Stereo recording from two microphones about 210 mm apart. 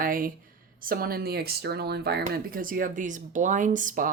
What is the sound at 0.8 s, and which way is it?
Speech, 45° right (ahead or behind).